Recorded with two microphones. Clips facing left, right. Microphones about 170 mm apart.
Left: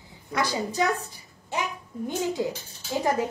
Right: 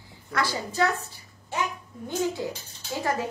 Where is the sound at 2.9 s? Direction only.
20° left (ahead or behind).